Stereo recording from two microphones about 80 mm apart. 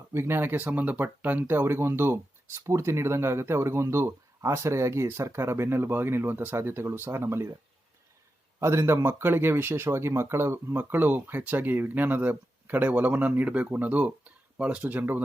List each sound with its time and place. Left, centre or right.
0.1 s speech: right
8.5 s speech: right